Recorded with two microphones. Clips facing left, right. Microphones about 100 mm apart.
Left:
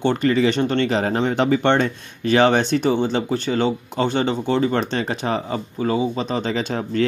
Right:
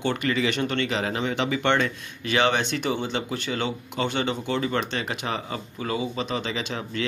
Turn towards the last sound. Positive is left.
turn(degrees=35)  # may be behind; listen again after turning